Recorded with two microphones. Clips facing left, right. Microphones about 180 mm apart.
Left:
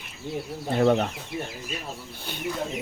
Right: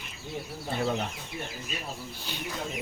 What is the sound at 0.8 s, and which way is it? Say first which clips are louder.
Speech: left 9 dB; 65° left (ahead or behind).